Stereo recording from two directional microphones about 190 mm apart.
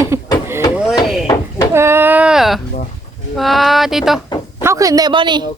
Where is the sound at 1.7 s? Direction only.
15° right (ahead or behind).